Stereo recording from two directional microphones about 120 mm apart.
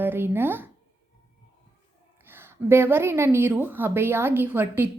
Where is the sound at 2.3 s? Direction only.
20° right (ahead or behind).